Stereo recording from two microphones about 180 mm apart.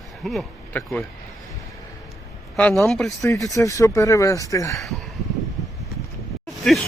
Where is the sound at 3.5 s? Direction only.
20° left (ahead or behind).